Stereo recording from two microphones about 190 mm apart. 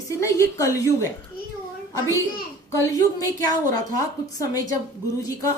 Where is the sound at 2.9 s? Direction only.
15° left (ahead or behind).